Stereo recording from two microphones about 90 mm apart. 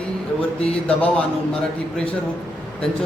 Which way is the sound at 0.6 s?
15° left (ahead or behind).